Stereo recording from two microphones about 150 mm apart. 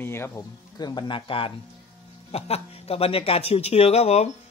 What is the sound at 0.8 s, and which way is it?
Speech, 30° left (ahead or behind).